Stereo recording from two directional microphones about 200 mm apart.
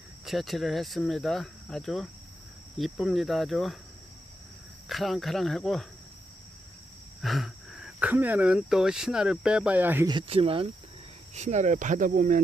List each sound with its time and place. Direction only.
0.3 s speech: centre (ahead or behind)
4.9 s speech: centre (ahead or behind)
7.2 s speech: centre (ahead or behind)
10.1 s speech: 25° right (ahead or behind); by 12.4 s 40° right (ahead or behind)